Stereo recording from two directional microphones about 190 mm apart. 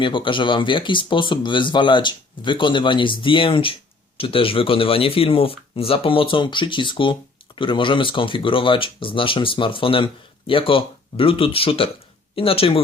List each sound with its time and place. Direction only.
0.0 s speech: 25° left (ahead or behind)